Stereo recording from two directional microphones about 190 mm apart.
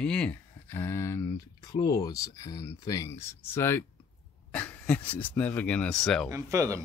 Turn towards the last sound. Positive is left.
turn(degrees=-15)  # may be behind; listen again after turning